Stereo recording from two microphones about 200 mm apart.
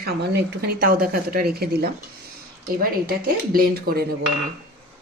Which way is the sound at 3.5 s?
50° right (ahead or behind).